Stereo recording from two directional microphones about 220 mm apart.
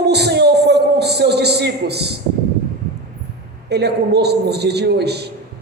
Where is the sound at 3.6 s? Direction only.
50° right (ahead or behind).